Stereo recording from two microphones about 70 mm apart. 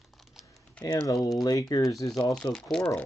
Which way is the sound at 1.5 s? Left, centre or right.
Left.